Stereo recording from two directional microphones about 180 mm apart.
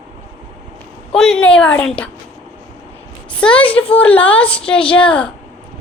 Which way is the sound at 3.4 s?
5° left (ahead or behind).